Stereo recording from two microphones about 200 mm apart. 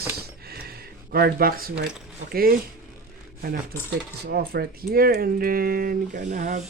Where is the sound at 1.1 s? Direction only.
50° right (ahead or behind).